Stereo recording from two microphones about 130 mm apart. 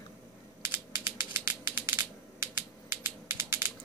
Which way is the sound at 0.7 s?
15° right (ahead or behind).